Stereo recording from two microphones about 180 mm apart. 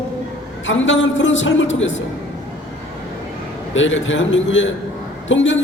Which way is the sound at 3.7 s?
90° left.